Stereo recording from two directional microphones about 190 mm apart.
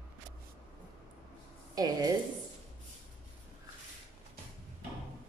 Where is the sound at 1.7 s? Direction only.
20° right (ahead or behind).